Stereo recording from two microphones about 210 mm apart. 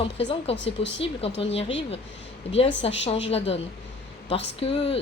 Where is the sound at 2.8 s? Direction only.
25° left (ahead or behind).